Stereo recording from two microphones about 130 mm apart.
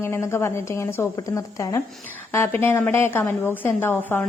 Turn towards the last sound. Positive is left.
turn(degrees=15)  # may be behind; listen again after turning